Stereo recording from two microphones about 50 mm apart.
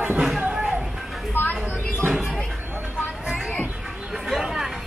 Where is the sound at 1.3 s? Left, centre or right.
Left.